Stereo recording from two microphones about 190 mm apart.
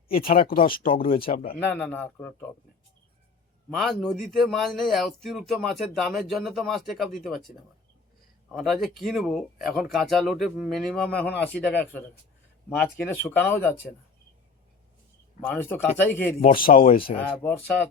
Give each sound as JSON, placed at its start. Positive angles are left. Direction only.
{"t": 0.1, "sound": "speech", "side_deg": 50}
{"t": 1.7, "sound": "speech", "side_deg": 5}
{"t": 3.8, "sound": "speech", "side_deg": 0}
{"t": 8.5, "sound": "speech", "side_deg": 0}
{"t": 15.4, "sound": "speech", "side_deg": 10}
{"t": 16.6, "sound": "speech", "side_deg": 50}
{"t": 16.9, "sound": "speech", "side_deg": 30}
{"t": 17.2, "sound": "speech", "side_deg": 10}